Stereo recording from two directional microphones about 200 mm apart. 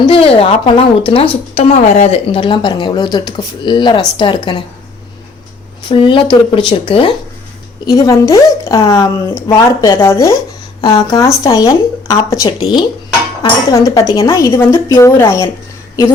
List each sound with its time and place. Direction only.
0.0 s a woman's voice: 30° left (ahead or behind)
5.9 s a woman's voice: 25° left (ahead or behind)